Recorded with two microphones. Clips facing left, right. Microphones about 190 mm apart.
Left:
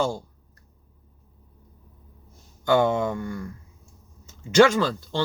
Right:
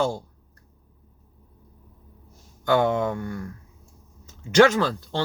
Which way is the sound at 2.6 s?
60° right (ahead or behind).